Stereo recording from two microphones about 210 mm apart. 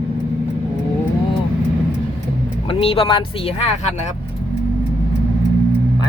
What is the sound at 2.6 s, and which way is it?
Speech, 25° left (ahead or behind).